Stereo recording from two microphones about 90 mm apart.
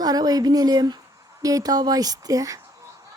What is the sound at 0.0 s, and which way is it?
A woman's voice, 45° right (ahead or behind).